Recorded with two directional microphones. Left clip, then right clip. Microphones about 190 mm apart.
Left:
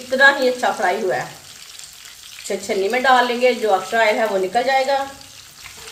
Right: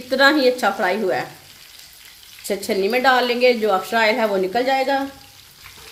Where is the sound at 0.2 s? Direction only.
50° right (ahead or behind).